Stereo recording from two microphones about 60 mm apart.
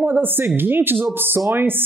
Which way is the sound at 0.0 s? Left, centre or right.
Right.